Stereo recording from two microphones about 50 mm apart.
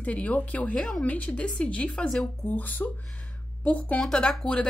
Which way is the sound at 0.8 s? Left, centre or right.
Centre.